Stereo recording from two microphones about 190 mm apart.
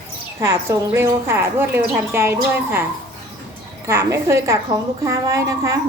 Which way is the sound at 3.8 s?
15° right (ahead or behind).